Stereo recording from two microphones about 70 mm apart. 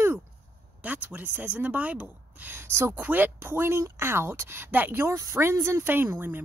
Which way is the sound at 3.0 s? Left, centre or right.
Right.